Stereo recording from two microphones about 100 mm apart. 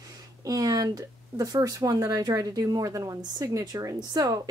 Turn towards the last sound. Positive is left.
turn(degrees=-40)  # may be behind; listen again after turning